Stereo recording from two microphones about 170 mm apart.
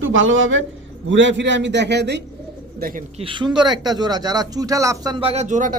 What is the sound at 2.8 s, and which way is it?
Speech, 55° right (ahead or behind).